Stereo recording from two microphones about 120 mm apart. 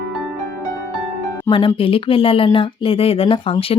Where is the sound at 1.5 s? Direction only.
45° left (ahead or behind).